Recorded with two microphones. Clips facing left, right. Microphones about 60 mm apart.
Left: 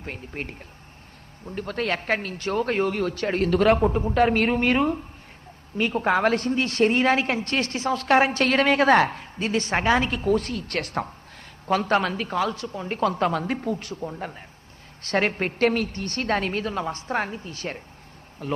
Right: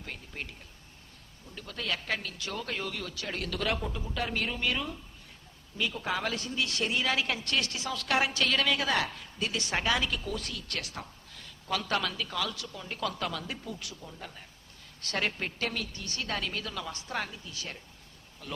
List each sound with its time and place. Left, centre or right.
0.0 s a woman's voice: left